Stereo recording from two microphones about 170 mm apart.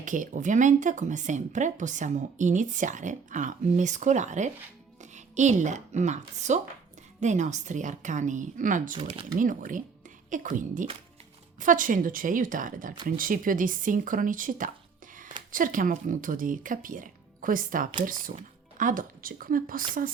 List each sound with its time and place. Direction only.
0.0 s a woman's voice: 50° right (ahead or behind)
9.0 s speech: 35° right (ahead or behind)
9.3 s speech: 50° right (ahead or behind)